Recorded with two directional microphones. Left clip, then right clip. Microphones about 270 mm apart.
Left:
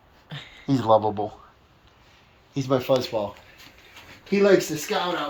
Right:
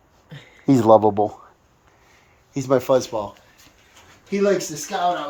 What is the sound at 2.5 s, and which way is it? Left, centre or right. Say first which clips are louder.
Speech: right 4 dB; right.